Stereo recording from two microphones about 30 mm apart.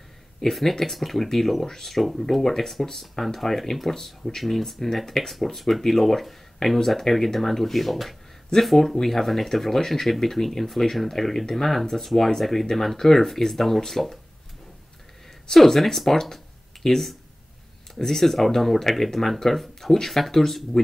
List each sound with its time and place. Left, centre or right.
0.4 s speech: centre
15.5 s speech: centre